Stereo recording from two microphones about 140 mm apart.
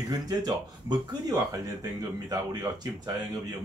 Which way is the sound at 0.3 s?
30° right (ahead or behind).